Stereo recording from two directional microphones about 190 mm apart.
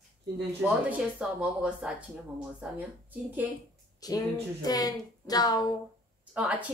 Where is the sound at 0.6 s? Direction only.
5° right (ahead or behind).